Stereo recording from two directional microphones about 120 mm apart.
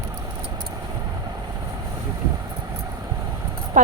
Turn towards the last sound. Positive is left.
turn(degrees=-90)